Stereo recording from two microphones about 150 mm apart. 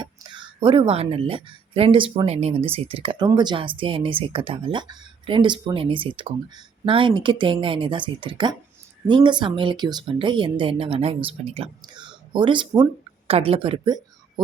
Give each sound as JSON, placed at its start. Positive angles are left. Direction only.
{"t": 0.0, "sound": "a woman's voice", "side_deg": -30}
{"t": 13.2, "sound": "speech", "side_deg": -40}